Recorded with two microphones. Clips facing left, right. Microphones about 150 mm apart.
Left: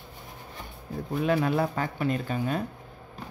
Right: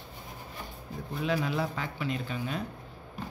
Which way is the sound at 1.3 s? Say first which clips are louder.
Left 5 dB; 50° left (ahead or behind).